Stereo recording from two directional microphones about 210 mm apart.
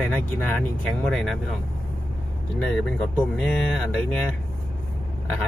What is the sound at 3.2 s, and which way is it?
Speech, 5° left (ahead or behind).